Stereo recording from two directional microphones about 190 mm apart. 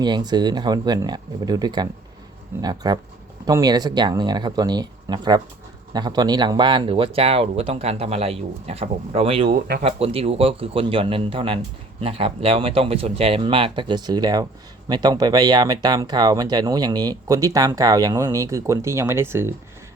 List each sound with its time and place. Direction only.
0.0 s speech: 20° right (ahead or behind)